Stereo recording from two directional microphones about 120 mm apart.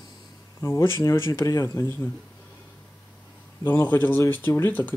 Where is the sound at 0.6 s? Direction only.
25° left (ahead or behind).